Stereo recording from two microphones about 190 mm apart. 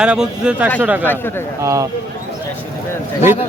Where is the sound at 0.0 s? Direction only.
5° right (ahead or behind).